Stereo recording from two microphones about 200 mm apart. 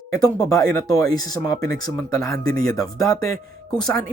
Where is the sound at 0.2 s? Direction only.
15° left (ahead or behind).